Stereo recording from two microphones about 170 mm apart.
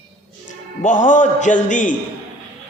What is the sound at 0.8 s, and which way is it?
A man's voice, 45° left (ahead or behind).